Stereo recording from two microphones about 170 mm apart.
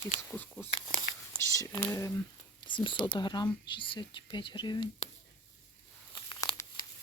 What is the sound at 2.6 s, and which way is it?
Speech, 30° left (ahead or behind).